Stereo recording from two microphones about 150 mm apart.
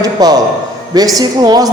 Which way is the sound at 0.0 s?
25° right (ahead or behind).